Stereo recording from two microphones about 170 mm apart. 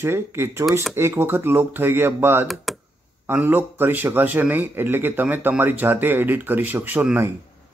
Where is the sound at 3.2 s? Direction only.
15° right (ahead or behind).